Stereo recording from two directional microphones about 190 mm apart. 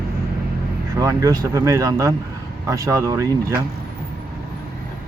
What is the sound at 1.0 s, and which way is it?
Speech, 20° right (ahead or behind).